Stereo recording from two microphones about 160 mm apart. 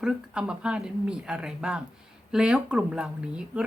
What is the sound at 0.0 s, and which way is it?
Speech, 5° right (ahead or behind).